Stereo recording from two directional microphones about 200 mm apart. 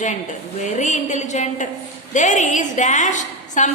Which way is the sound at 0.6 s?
35° left (ahead or behind).